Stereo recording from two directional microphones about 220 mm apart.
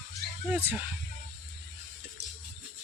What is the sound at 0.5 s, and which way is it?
Speech, 10° right (ahead or behind).